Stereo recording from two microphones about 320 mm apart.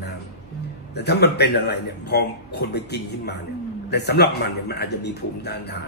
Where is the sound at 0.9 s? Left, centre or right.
Left.